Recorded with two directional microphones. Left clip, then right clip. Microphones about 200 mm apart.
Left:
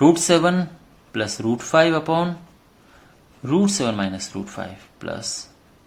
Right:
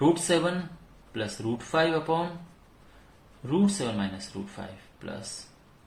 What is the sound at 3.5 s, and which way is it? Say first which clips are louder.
Speech: left 7 dB; 60° left (ahead or behind).